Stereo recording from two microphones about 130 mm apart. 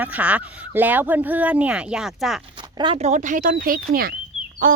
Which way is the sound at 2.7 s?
40° right (ahead or behind).